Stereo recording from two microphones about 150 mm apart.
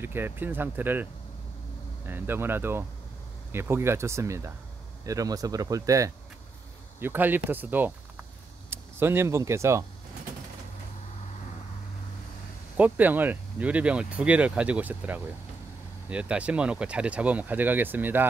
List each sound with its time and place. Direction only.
0.0 s speech: 15° right (ahead or behind)
2.0 s speech: 15° right (ahead or behind)
12.7 s speech: 10° right (ahead or behind)